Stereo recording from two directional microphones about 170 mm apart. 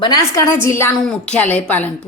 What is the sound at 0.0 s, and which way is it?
Speech, 20° left (ahead or behind).